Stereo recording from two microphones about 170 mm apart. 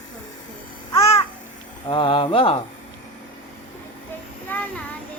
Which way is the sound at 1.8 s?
30° left (ahead or behind).